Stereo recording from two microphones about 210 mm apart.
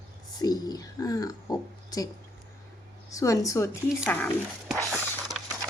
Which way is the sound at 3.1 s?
15° left (ahead or behind).